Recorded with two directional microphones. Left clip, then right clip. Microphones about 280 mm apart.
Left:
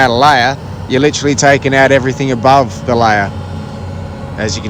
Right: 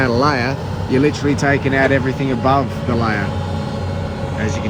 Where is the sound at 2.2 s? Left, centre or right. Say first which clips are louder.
Left 8 dB; right.